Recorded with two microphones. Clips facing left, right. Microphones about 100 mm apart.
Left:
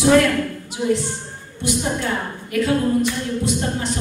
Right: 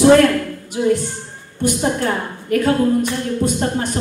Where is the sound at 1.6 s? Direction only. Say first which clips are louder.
Right 4 dB; 45° right (ahead or behind).